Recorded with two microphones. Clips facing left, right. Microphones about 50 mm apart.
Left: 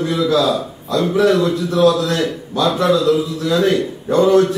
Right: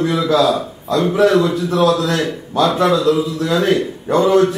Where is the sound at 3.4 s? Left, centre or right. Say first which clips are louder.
Even; right.